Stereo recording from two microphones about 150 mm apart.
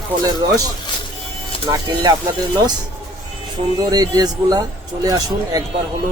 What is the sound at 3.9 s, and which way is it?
Speech, 25° right (ahead or behind).